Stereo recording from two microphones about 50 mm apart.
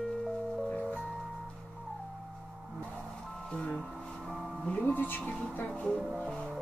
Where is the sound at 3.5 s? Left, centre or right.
Centre.